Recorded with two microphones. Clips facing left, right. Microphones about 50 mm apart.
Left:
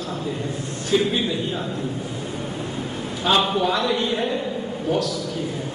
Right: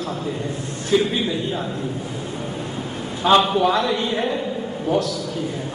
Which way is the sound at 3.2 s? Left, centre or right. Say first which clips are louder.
Right 4 dB; right.